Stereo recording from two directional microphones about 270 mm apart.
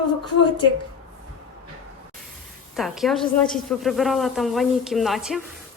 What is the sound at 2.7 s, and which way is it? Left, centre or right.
A woman's voice, centre.